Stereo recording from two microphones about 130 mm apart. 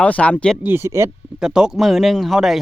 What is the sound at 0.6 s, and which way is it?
Speech, 20° right (ahead or behind).